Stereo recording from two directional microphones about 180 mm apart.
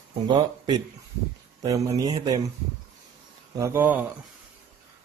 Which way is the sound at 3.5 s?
15° right (ahead or behind).